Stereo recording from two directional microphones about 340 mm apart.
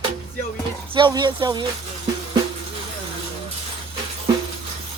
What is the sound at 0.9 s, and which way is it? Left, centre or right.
Speech, centre.